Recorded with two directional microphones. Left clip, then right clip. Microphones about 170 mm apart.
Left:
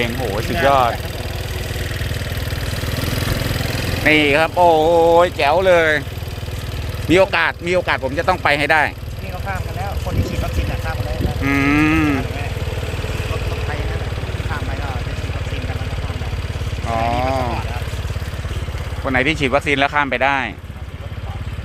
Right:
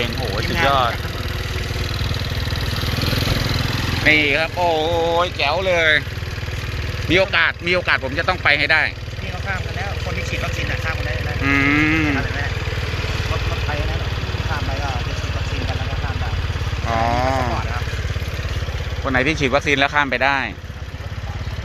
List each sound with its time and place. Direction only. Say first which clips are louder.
0.6 s speech: left 3 dB; 45° left (ahead or behind)
4.0 s speech: left 2 dB; 50° left (ahead or behind)
7.1 s speech: left 2 dB; 50° left (ahead or behind)
7.6 s speech: even; 30° left (ahead or behind); by 8.9 s 50° left (ahead or behind)
11.4 s vehicle: even; 25° left (ahead or behind)
16.9 s a sound: even; centre (ahead or behind)
19.0 s speech: left 1 dB; 15° left (ahead or behind)